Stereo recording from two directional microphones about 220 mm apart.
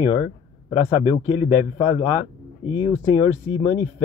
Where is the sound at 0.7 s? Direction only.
25° left (ahead or behind).